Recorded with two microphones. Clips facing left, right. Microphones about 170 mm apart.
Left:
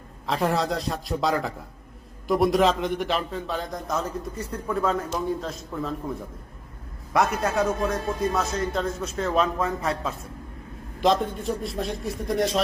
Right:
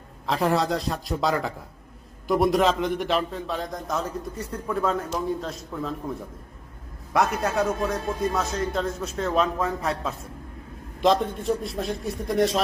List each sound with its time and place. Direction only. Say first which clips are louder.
0.3 s a man's voice: right 1 dB; centre (ahead or behind)
7.1 s a man's voice: even; centre (ahead or behind)